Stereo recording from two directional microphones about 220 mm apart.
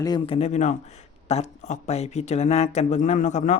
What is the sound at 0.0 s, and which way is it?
Speech, 20° left (ahead or behind).